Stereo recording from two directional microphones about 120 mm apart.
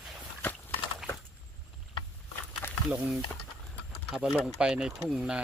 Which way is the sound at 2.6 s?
20° left (ahead or behind).